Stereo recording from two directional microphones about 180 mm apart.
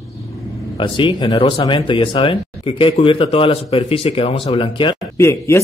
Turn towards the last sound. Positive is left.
turn(degrees=15)  # may be behind; listen again after turning